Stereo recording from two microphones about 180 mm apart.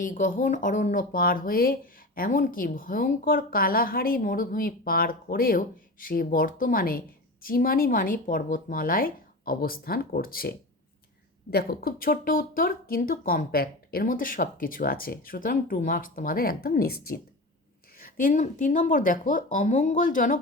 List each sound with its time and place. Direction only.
0.0 s speech: 45° left (ahead or behind)
11.5 s speech: 60° left (ahead or behind)